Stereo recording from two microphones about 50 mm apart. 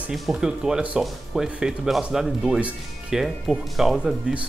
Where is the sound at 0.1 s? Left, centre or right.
Centre.